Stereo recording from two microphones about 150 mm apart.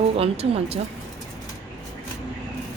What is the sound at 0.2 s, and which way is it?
Speech, 40° right (ahead or behind).